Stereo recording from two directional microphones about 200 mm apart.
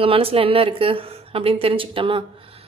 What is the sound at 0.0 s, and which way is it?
A woman's voice, 30° right (ahead or behind).